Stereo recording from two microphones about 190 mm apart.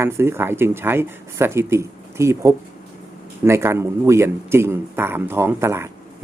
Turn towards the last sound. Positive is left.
turn(degrees=-15)  # may be behind; listen again after turning